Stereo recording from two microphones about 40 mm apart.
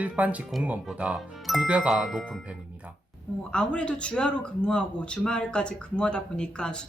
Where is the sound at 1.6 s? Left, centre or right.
Right.